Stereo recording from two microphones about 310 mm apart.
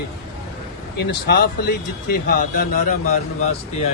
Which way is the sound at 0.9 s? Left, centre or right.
Left.